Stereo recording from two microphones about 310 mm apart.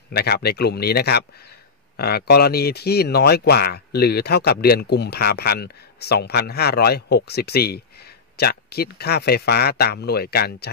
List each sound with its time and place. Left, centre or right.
0.1 s speech: left